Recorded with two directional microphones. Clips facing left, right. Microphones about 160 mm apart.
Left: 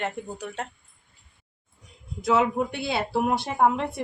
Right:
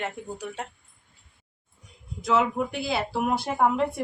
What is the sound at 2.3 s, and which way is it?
Speech, 25° left (ahead or behind).